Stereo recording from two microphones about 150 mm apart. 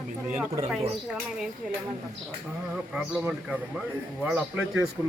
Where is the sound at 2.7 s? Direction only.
5° right (ahead or behind).